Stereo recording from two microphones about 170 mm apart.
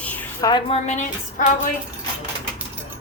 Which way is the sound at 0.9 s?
45° left (ahead or behind).